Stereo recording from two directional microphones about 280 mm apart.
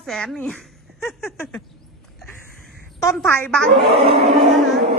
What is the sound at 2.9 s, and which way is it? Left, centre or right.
A woman's voice, centre.